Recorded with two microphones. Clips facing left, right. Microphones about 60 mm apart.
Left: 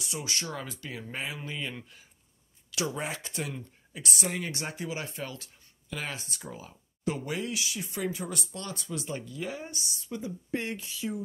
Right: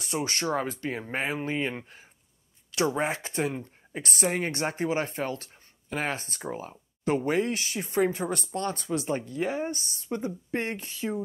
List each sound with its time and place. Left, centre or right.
0.0 s speech: right